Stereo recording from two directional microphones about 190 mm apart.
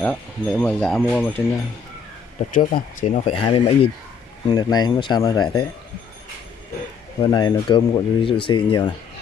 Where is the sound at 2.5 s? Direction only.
40° left (ahead or behind).